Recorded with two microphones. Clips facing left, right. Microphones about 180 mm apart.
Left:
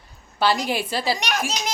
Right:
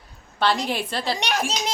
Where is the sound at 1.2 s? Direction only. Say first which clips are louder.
Right 1 dB; 30° right (ahead or behind).